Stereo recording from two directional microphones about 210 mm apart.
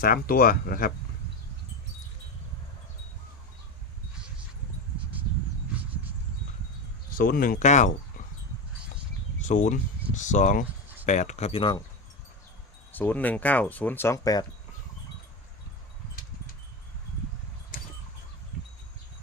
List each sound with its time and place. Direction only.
0.0 s speech: 45° left (ahead or behind)
7.1 s speech: 45° left (ahead or behind)
9.4 s speech: 35° left (ahead or behind)
12.9 s speech: 10° left (ahead or behind)
17.7 s chicken: 40° left (ahead or behind)